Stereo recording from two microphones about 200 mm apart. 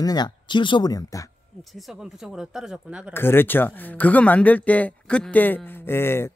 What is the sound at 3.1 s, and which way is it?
Speech, 10° left (ahead or behind).